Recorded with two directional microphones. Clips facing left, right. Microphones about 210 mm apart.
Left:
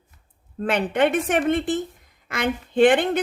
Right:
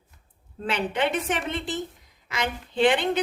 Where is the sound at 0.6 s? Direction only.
50° left (ahead or behind).